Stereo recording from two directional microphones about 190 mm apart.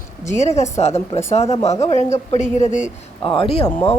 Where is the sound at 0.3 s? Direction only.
35° left (ahead or behind).